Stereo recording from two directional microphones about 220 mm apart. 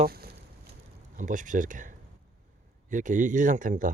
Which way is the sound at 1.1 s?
35° right (ahead or behind).